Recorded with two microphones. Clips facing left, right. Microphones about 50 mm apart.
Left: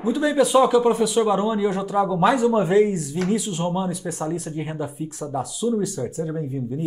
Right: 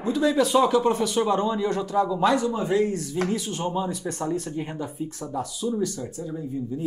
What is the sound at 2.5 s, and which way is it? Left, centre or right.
Speech, left.